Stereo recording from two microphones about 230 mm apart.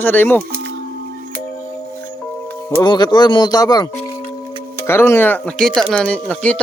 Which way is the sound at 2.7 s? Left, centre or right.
Centre.